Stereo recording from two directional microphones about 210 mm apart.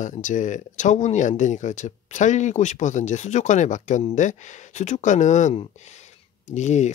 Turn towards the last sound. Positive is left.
turn(degrees=35)  # may be behind; listen again after turning